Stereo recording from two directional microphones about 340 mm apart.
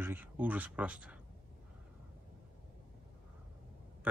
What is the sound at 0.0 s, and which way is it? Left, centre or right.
Speech, centre.